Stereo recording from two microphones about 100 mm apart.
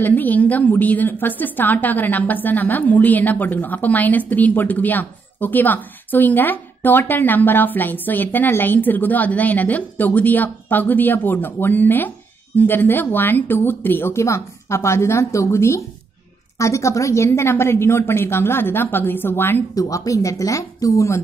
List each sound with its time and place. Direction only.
0.0 s a woman's voice: 15° left (ahead or behind)
19.7 s speech: 35° left (ahead or behind)